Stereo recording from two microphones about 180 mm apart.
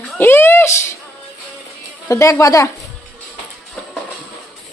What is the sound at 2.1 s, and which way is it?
Speech, 15° left (ahead or behind).